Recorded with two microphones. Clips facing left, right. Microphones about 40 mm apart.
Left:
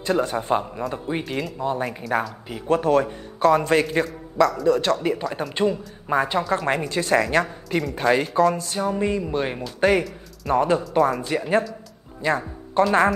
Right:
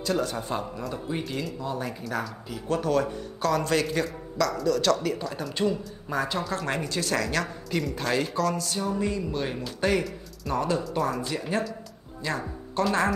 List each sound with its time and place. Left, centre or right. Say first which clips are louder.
0.0 s speech: left 5 dB; left
1.2 s speech: left 4 dB; centre
1.6 s speech: left 6 dB; left
6.6 s speech: left 6 dB; centre
6.9 s speech: left 9 dB; left
10.9 s speech: left 7 dB; centre